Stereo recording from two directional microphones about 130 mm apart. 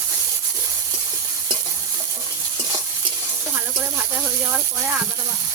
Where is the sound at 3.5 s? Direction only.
15° right (ahead or behind).